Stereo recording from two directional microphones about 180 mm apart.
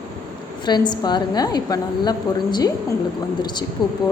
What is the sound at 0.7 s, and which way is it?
A woman's voice, 25° left (ahead or behind).